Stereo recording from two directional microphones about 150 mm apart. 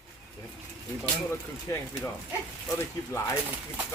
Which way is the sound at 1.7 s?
25° left (ahead or behind).